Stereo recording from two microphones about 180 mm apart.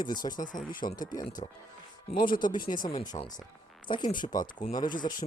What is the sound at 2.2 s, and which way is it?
Speech, 50° left (ahead or behind).